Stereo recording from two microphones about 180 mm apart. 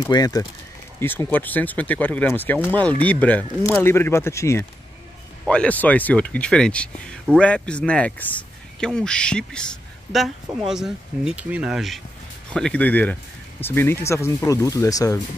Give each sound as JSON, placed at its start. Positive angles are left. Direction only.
{"t": 0.0, "sound": "speech", "side_deg": 20}